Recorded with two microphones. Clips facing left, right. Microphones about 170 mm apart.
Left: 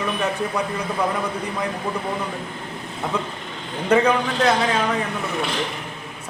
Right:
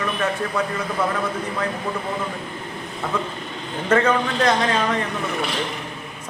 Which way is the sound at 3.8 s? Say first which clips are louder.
Left 1 dB; 10° left (ahead or behind).